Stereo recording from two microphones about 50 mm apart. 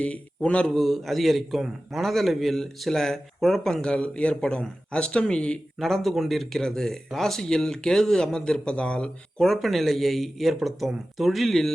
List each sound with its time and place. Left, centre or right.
0.0 s speech: left
0.7 s a man's voice: centre; by 5.5 s left
5.8 s a man's voice: centre; by 9.0 s left
9.4 s speech: centre